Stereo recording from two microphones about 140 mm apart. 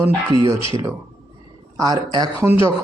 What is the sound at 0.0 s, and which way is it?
Speech, 30° right (ahead or behind).